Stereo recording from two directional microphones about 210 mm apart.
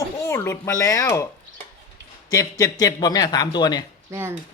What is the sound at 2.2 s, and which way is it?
Speech, 15° left (ahead or behind).